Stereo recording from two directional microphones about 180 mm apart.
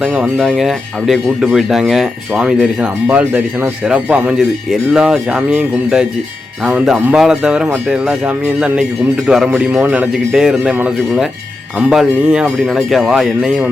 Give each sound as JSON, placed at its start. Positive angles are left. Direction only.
{"t": 0.0, "sound": "speech", "side_deg": 0}